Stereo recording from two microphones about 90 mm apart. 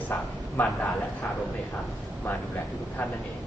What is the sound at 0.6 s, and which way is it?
Speech, 20° left (ahead or behind).